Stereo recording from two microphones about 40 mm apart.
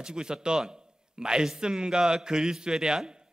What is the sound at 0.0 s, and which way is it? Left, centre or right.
A man's voice, centre.